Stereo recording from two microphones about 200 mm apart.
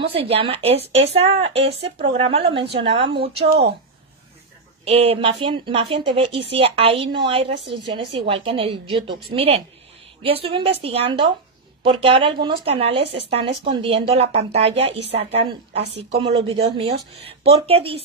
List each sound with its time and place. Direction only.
0.0 s a woman's voice: 30° right (ahead or behind)
1.6 s speech: 60° right (ahead or behind)
2.0 s a woman's voice: 25° right (ahead or behind)
4.8 s a woman's voice: 30° right (ahead or behind)